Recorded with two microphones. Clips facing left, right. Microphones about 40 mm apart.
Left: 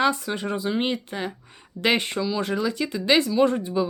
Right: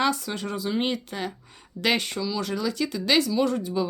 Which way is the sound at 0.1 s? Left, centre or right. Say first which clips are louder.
Left 2 dB; centre.